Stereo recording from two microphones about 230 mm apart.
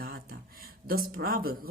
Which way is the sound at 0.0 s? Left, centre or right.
Right.